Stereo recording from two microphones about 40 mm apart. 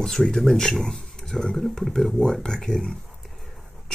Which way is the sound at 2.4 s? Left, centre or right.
Centre.